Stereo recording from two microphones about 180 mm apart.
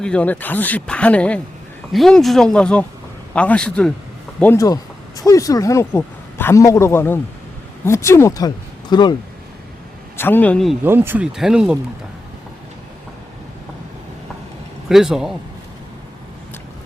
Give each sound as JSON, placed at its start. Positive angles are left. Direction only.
{"t": 0.0, "sound": "speech", "side_deg": 5}
{"t": 10.2, "sound": "speech", "side_deg": 10}
{"t": 10.8, "sound": "speech", "side_deg": -10}
{"t": 14.8, "sound": "speech", "side_deg": -5}